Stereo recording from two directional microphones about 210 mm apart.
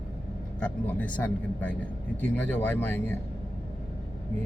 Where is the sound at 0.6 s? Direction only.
5° left (ahead or behind).